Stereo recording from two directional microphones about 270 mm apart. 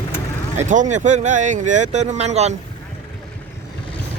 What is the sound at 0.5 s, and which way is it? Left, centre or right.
Speech, right.